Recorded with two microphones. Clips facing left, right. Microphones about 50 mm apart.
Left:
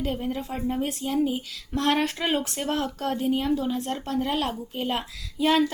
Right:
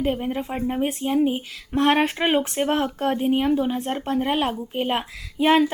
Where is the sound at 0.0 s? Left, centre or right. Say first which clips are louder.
Right 4 dB; right.